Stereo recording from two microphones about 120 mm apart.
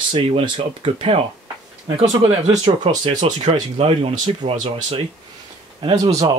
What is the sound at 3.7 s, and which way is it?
Speech, 55° right (ahead or behind).